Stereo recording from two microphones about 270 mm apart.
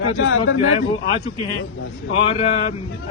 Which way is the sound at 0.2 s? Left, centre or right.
Left.